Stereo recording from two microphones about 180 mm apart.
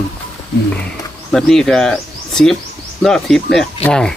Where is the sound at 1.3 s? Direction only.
Centre (ahead or behind).